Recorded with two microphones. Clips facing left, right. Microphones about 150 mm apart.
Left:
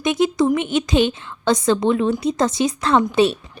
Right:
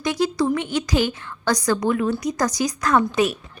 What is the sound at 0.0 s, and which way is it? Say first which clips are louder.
A woman's voice: left 4 dB; 20° left (ahead or behind).